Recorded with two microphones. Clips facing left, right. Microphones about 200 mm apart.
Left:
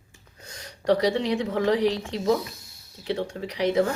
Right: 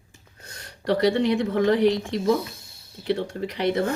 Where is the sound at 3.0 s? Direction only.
60° right (ahead or behind).